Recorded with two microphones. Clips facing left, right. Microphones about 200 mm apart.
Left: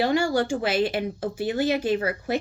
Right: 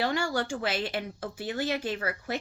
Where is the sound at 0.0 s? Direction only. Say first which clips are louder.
Left 7 dB; 10° left (ahead or behind).